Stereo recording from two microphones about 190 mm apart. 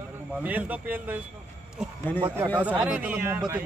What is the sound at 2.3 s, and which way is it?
Speech, 10° right (ahead or behind).